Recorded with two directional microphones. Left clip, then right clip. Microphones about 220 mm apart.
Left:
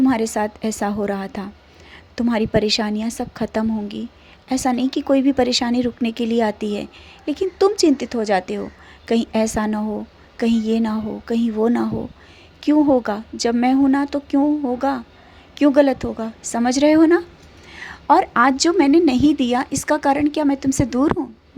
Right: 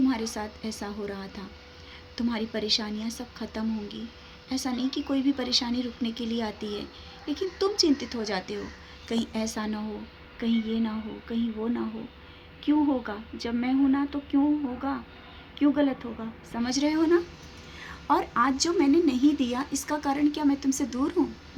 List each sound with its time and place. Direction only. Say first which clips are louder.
0.1 s a woman's voice: left 11 dB; 40° left (ahead or behind)